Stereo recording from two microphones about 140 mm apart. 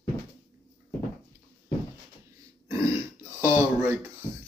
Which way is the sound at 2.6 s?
20° right (ahead or behind).